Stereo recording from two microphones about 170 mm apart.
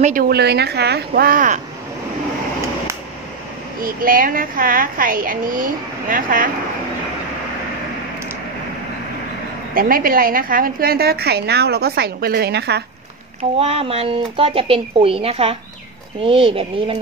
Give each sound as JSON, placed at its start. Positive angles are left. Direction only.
{"t": 0.0, "sound": "speech", "side_deg": -55}
{"t": 3.8, "sound": "a woman's voice", "side_deg": -55}
{"t": 9.8, "sound": "a woman's voice", "side_deg": -60}
{"t": 13.6, "sound": "speech", "side_deg": -35}